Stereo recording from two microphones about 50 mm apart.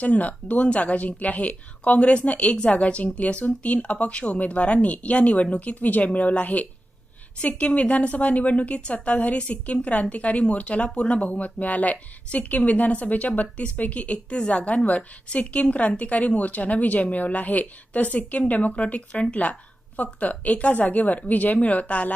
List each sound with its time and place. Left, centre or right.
0.0 s a woman's voice: left